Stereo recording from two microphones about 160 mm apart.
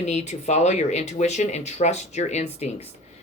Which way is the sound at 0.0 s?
45° left (ahead or behind).